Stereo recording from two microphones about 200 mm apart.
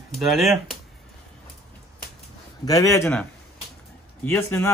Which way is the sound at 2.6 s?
15° left (ahead or behind).